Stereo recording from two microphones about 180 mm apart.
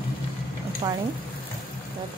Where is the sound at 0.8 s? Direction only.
25° right (ahead or behind).